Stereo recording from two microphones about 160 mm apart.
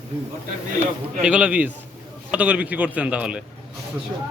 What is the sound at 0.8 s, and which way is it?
Speech, 10° right (ahead or behind).